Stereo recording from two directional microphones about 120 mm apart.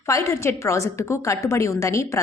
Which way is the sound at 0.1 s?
25° left (ahead or behind).